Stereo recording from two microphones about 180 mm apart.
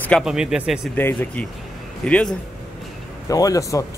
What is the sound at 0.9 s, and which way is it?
Speech, 10° left (ahead or behind).